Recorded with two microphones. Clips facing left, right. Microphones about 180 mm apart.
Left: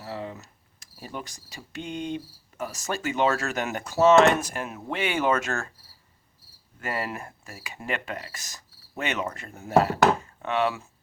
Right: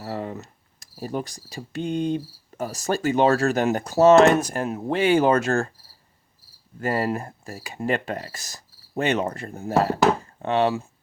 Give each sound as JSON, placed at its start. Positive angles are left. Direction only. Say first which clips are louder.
{"t": 0.0, "sound": "speech", "louder": "right 5 dB", "side_deg": -45}
{"t": 6.7, "sound": "speech", "louder": "right 7 dB", "side_deg": -35}
{"t": 10.2, "sound": "chopping", "louder": "right 4 dB", "side_deg": -30}